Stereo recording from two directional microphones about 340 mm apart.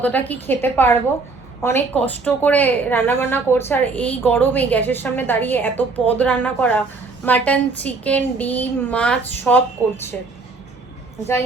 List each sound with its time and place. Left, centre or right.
0.0 s a woman's voice: centre